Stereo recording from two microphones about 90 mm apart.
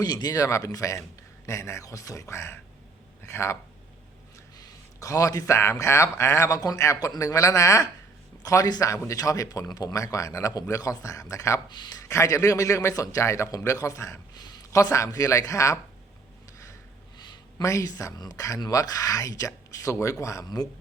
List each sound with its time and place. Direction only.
0.0 s speech: 50° left (ahead or behind); by 3.6 s 30° left (ahead or behind)
4.5 s a man's voice: 40° left (ahead or behind)
11.7 s speech: 50° left (ahead or behind); by 14.2 s 35° left (ahead or behind)
14.3 s speech: 50° left (ahead or behind)
17.6 s speech: 35° left (ahead or behind)